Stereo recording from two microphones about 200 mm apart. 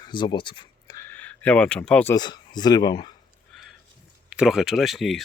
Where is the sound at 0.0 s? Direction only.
25° left (ahead or behind).